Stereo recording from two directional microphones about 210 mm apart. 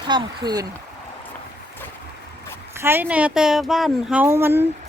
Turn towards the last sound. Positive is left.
turn(degrees=-10)  # may be behind; listen again after turning